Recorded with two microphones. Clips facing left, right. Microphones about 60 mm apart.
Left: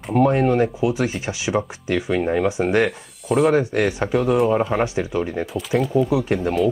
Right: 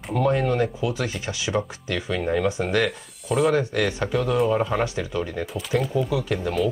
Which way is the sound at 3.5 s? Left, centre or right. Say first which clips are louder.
Left 4 dB; left.